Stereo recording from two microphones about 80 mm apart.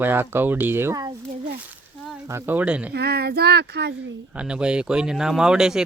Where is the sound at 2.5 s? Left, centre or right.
Centre.